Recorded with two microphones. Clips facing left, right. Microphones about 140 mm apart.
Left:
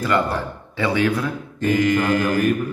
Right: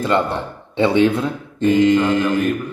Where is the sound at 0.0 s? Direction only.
25° right (ahead or behind).